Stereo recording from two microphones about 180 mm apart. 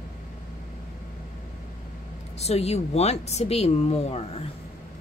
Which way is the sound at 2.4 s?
35° left (ahead or behind).